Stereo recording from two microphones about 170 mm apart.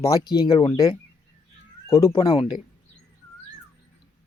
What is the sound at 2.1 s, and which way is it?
Speech, 30° left (ahead or behind).